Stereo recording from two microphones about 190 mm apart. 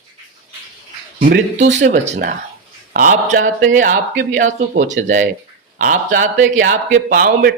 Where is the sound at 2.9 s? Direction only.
40° right (ahead or behind).